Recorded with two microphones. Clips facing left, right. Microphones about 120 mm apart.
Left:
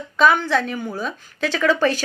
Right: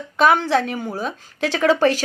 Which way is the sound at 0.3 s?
30° right (ahead or behind).